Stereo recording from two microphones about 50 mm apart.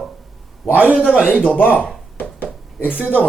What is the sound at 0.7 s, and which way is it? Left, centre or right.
Speech, right.